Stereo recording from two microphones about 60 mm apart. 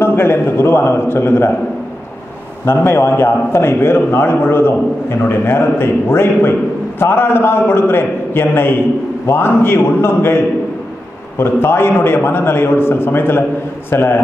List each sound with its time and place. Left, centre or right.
0.0 s a man's voice: left
2.7 s a man's voice: left